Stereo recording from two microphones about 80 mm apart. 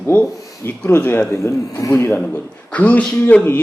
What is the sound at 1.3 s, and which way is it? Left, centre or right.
A man's voice, left.